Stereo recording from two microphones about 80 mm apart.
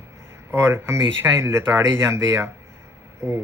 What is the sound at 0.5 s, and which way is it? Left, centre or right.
Speech, right.